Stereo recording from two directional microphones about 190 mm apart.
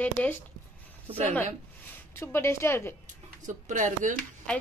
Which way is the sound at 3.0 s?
40° right (ahead or behind).